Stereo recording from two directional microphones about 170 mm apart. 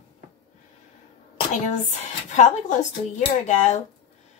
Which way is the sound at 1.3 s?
45° left (ahead or behind).